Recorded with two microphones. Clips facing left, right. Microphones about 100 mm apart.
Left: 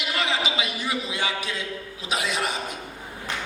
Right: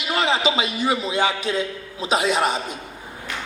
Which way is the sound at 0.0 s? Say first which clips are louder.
Right 6 dB; 30° right (ahead or behind).